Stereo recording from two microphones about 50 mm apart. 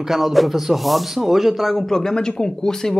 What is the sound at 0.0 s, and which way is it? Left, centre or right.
A man's voice, centre.